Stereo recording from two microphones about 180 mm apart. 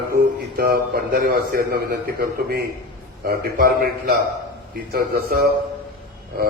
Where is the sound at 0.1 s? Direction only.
55° right (ahead or behind).